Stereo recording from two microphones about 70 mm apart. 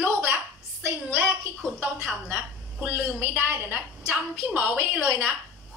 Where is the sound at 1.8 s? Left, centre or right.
Right.